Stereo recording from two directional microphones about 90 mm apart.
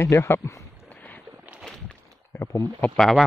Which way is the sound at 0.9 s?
20° left (ahead or behind).